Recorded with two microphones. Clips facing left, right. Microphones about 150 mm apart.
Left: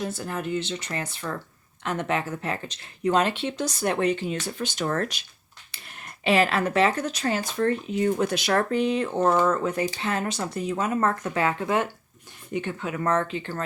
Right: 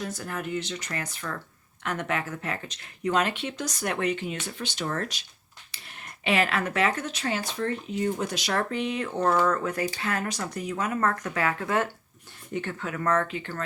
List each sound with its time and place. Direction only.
0.0 s speech: 30° left (ahead or behind); by 5.2 s 50° left (ahead or behind)
5.7 s speech: 40° left (ahead or behind)
7.9 s speech: 65° left (ahead or behind)
8.7 s speech: 35° left (ahead or behind)